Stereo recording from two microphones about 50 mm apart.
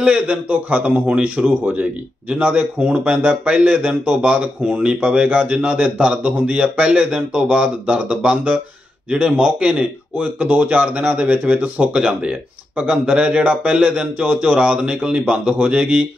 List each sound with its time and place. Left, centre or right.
0.0 s speech: right